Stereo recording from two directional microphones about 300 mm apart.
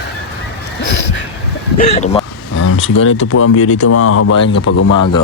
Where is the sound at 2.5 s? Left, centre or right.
Left.